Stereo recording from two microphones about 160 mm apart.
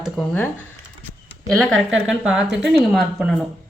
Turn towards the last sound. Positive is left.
turn(degrees=0)  # may be behind; listen again after turning